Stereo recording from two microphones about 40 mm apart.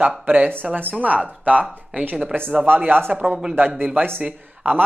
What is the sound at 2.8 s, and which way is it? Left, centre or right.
Speech, right.